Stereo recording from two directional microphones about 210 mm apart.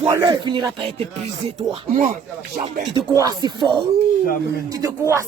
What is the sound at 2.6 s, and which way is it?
Speech, 20° right (ahead or behind).